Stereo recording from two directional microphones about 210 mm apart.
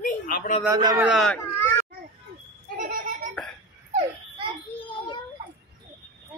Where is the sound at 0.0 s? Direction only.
40° left (ahead or behind).